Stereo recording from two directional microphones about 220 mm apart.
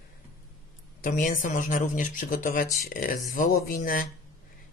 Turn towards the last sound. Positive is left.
turn(degrees=40)  # may be behind; listen again after turning